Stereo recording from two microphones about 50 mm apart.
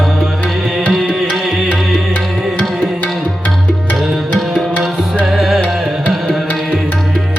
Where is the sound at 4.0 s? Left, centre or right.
Centre.